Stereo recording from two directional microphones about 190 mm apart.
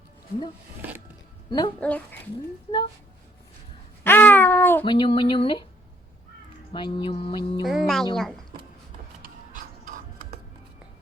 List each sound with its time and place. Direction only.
0.8 s a sound: 10° right (ahead or behind)
1.5 s speech: 20° left (ahead or behind)
1.8 s speech: 5° left (ahead or behind)
4.0 s a sound: 10° left (ahead or behind)
4.8 s speech: 25° left (ahead or behind)
6.7 s speech: 25° left (ahead or behind)
7.6 s a woman's voice: centre (ahead or behind)
9.2 s music: 45° right (ahead or behind)